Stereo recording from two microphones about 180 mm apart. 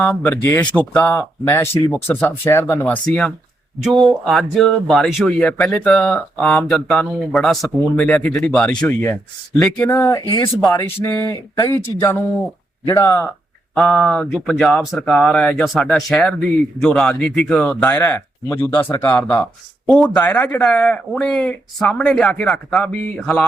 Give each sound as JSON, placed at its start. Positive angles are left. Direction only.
{"t": 0.0, "sound": "speech", "side_deg": 5}
{"t": 13.7, "sound": "speech", "side_deg": 5}